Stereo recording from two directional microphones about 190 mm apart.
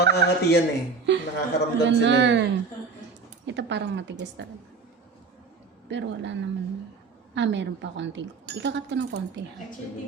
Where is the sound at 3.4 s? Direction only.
70° right (ahead or behind).